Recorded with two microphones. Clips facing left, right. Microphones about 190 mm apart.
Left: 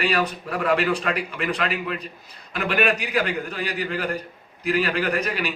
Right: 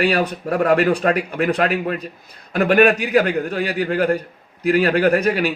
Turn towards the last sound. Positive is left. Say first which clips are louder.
# right 8 dB
turn(degrees=-45)  # may be behind; listen again after turning